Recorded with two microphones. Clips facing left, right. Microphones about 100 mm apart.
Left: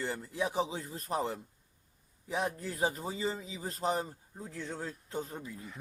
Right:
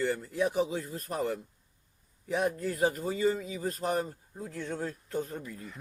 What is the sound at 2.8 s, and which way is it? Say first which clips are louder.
Speech: right 4 dB; 20° left (ahead or behind).